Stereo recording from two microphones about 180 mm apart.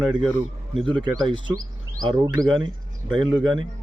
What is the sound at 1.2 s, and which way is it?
Speech, 25° right (ahead or behind).